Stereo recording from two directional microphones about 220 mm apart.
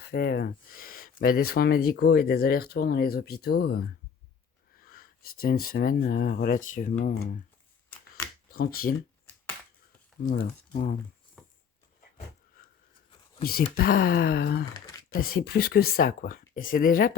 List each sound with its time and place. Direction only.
0.1 s speech: 45° left (ahead or behind)
8.4 s speech: 45° left (ahead or behind)
10.2 s speech: 40° left (ahead or behind)
11.4 s a sound: 5° left (ahead or behind)
13.4 s speech: 45° left (ahead or behind)